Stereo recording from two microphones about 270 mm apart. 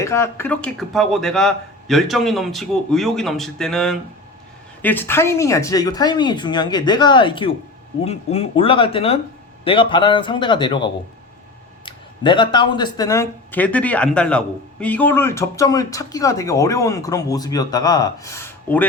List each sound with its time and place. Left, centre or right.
0.0 s speech: centre